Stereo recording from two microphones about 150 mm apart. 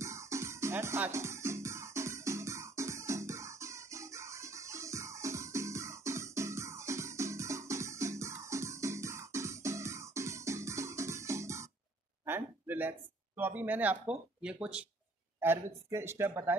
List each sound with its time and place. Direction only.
0.0 s music: 20° right (ahead or behind)
12.3 s a sound: 15° right (ahead or behind)
13.4 s speech: 10° right (ahead or behind)
15.9 s speech: 15° right (ahead or behind)